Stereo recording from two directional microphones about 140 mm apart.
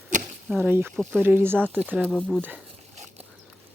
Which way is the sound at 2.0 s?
5° left (ahead or behind).